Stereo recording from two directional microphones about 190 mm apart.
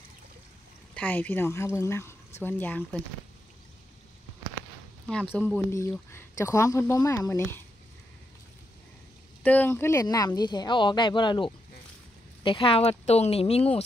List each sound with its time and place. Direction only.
0.9 s speech: 5° left (ahead or behind)
5.0 s speech: 5° left (ahead or behind)
9.4 s speech: 10° left (ahead or behind); by 13.7 s 30° left (ahead or behind)